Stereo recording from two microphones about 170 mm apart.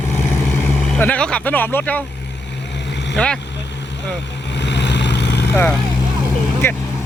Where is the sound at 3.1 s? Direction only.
5° left (ahead or behind).